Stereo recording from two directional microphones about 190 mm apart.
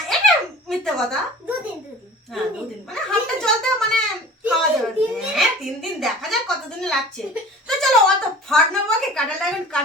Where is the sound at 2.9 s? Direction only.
5° left (ahead or behind).